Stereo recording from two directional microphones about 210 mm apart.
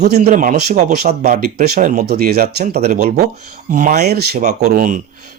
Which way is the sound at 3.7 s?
30° right (ahead or behind).